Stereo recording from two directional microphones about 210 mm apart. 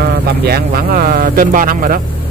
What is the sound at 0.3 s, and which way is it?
Speech, 45° right (ahead or behind).